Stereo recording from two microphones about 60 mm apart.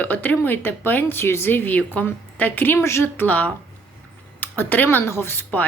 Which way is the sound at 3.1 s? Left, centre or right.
Left.